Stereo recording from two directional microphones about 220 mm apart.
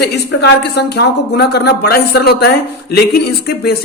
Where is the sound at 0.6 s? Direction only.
50° left (ahead or behind).